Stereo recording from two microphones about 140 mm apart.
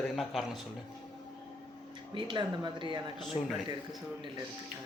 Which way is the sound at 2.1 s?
35° right (ahead or behind).